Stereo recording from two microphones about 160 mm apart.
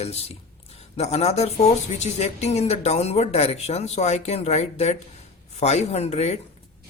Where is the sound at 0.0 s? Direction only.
40° left (ahead or behind).